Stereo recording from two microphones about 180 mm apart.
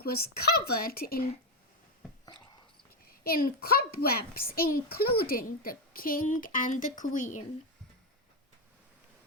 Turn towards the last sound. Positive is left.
turn(degrees=45)  # may be behind; listen again after turning